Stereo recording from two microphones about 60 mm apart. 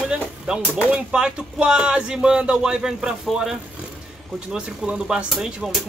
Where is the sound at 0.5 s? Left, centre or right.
Centre.